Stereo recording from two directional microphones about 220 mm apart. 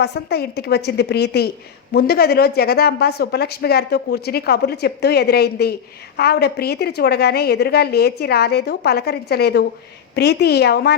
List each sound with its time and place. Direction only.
0.0 s a woman's voice: 45° left (ahead or behind)